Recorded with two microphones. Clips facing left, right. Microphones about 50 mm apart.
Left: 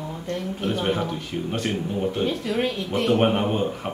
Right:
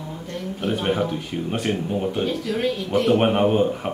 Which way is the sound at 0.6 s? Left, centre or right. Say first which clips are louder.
Right 3 dB; centre.